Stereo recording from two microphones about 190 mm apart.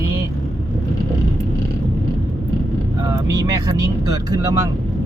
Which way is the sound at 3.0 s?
20° right (ahead or behind).